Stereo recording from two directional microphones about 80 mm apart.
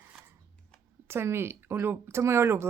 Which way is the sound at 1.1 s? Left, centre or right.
Right.